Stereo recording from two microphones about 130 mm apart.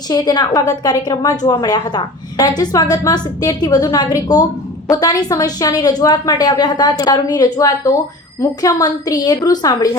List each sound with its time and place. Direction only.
0.1 s a woman's voice: 30° left (ahead or behind)